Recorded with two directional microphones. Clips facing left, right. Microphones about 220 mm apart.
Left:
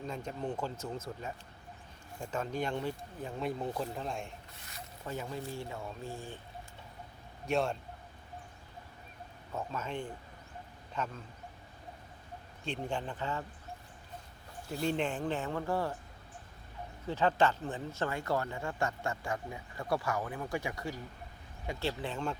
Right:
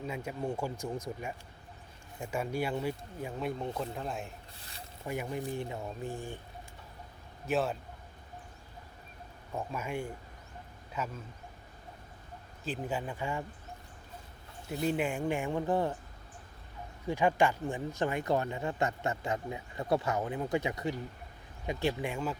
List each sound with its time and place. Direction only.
0.0 s speech: 10° right (ahead or behind)
5.0 s speech: 15° right (ahead or behind)
7.4 s speech: 5° right (ahead or behind)
9.6 s speech: 10° right (ahead or behind)
12.6 s speech: 5° right (ahead or behind)
14.8 s speech: 10° right (ahead or behind)
17.1 s speech: 15° right (ahead or behind)